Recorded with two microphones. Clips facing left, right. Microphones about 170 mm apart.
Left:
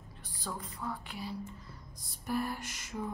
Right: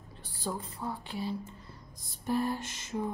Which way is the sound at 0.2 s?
30° right (ahead or behind).